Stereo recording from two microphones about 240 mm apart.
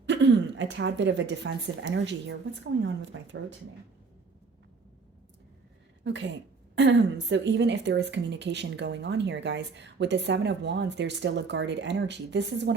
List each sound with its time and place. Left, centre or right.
0.0 s a woman's voice: right
6.0 s speech: right